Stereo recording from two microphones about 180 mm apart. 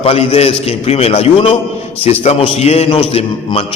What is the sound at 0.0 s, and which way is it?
A man's voice, 35° left (ahead or behind).